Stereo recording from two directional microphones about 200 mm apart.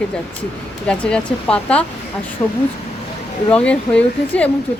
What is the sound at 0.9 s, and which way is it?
A woman's voice, 5° left (ahead or behind).